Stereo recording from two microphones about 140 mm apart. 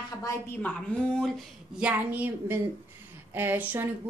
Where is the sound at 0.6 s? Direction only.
10° left (ahead or behind).